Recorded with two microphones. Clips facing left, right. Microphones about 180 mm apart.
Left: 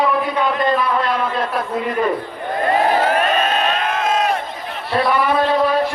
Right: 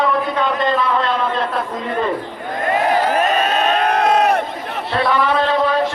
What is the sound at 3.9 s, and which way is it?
Crowd, 65° right (ahead or behind).